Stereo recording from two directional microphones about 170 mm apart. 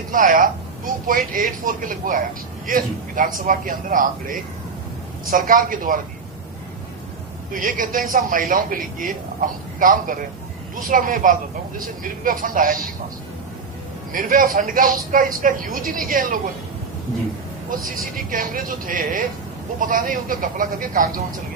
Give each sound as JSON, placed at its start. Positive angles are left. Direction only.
{"t": 0.1, "sound": "a man's voice", "side_deg": -50}
{"t": 7.5, "sound": "a man's voice", "side_deg": -50}
{"t": 14.1, "sound": "a man's voice", "side_deg": -55}
{"t": 17.7, "sound": "a man's voice", "side_deg": -55}